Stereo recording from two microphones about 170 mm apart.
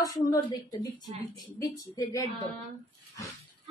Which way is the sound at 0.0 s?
20° left (ahead or behind).